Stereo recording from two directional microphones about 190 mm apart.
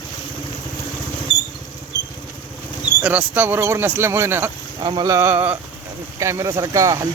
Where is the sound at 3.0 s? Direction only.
10° right (ahead or behind).